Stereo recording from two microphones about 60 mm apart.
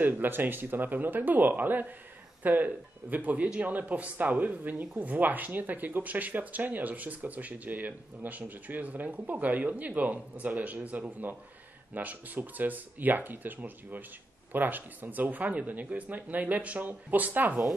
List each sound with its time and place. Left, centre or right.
0.0 s speech: right